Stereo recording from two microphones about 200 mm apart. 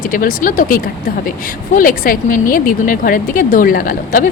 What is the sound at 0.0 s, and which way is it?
Speech, 45° left (ahead or behind).